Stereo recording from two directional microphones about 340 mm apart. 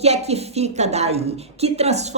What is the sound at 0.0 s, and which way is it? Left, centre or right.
A woman's voice, centre.